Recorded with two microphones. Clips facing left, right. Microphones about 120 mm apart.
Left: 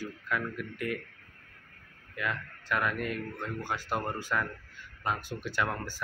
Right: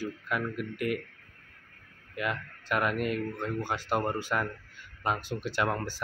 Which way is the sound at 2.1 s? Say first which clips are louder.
Right 2 dB; 20° right (ahead or behind).